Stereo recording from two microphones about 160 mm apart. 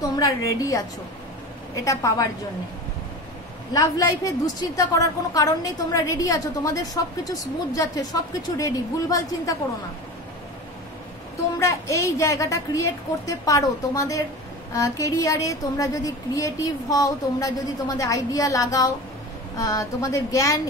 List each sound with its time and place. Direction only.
0.1 s a woman's voice: 25° left (ahead or behind)
1.9 s a woman's voice: 20° left (ahead or behind)
3.7 s a woman's voice: 20° left (ahead or behind)
11.5 s a woman's voice: 20° left (ahead or behind)